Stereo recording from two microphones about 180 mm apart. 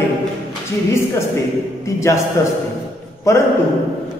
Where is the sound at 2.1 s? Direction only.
15° left (ahead or behind).